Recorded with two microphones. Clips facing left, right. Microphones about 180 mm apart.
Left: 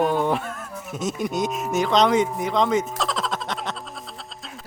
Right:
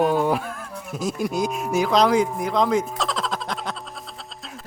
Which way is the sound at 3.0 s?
Centre (ahead or behind).